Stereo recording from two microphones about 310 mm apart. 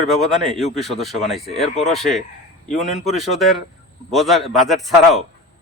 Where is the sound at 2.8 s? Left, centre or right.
Left.